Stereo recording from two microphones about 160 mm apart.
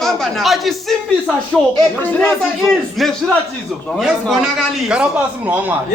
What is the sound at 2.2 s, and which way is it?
A man's voice, centre (ahead or behind).